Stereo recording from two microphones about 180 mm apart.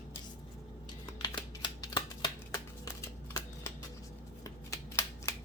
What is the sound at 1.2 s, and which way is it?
Shuffling cards, 25° left (ahead or behind).